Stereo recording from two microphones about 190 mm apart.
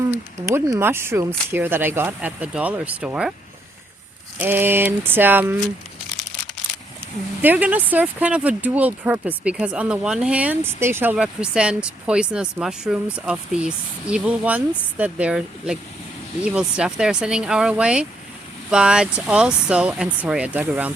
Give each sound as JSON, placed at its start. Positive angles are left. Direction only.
{"t": 0.1, "sound": "speech", "side_deg": -15}
{"t": 4.4, "sound": "speech", "side_deg": -10}
{"t": 7.4, "sound": "speech", "side_deg": -10}